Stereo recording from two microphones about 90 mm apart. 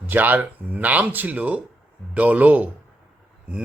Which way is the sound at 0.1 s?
20° right (ahead or behind).